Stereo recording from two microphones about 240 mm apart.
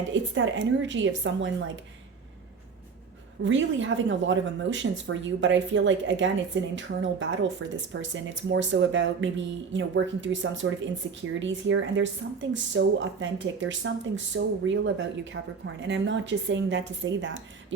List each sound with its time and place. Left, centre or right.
0.1 s speech: right
3.4 s speech: right